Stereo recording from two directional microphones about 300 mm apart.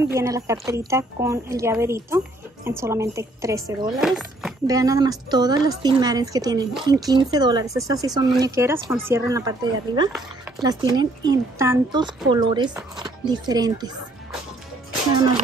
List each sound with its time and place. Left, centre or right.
0.1 s a woman's voice: centre
4.6 s a woman's voice: centre